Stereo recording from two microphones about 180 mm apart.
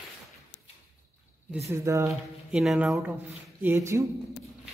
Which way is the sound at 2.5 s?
5° right (ahead or behind).